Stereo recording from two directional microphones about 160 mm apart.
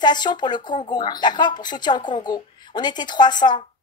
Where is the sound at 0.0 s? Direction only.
25° left (ahead or behind).